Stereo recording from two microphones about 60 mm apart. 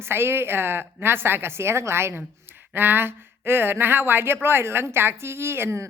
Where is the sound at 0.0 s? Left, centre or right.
Right.